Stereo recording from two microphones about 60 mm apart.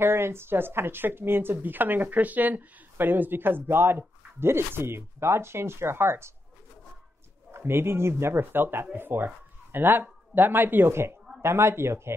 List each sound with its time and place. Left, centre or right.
0.0 s speech: right
7.5 s a man's voice: right